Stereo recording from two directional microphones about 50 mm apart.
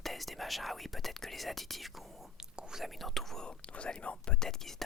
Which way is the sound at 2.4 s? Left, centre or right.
Centre.